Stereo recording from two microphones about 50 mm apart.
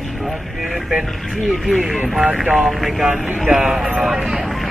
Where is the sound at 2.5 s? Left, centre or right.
Centre.